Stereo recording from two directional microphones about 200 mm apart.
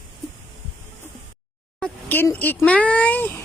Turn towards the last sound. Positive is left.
turn(degrees=10)  # may be behind; listen again after turning